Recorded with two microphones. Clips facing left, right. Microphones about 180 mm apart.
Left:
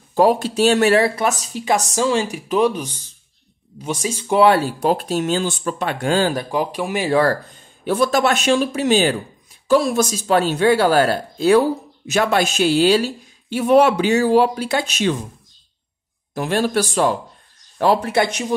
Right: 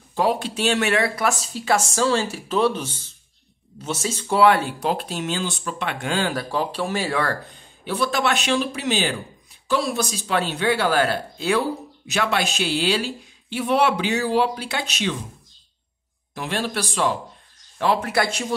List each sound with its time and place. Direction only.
0.1 s speech: 45° left (ahead or behind); by 4.4 s 15° left (ahead or behind)
4.6 s speech: 45° left (ahead or behind)
6.3 s speech: 15° left (ahead or behind)
7.8 s speech: 45° left (ahead or behind)
16.3 s speech: 45° left (ahead or behind)
18.1 s speech: 20° left (ahead or behind)